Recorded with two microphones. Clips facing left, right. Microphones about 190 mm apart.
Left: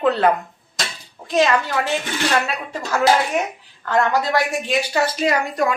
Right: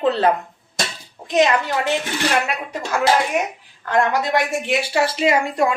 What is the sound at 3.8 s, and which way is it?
A woman's voice, 20° right (ahead or behind).